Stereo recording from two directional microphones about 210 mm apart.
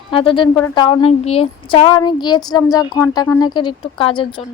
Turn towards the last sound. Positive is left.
turn(degrees=25)  # may be behind; listen again after turning